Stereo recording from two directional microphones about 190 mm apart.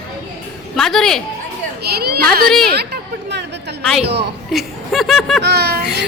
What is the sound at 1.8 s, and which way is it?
Speech, 55° right (ahead or behind).